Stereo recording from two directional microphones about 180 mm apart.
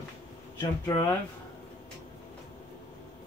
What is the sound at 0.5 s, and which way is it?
Speech, 25° left (ahead or behind).